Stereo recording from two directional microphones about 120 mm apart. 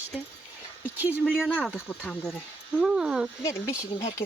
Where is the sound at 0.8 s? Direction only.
15° right (ahead or behind).